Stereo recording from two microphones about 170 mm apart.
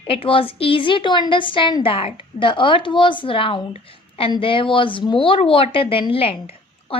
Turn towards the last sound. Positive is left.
turn(degrees=35)  # may be behind; listen again after turning